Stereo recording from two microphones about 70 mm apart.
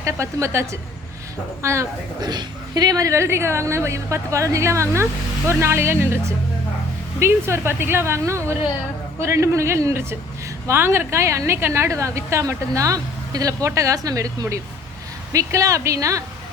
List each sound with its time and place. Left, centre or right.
0.0 s a woman's voice: right
2.2 s a woman's voice: right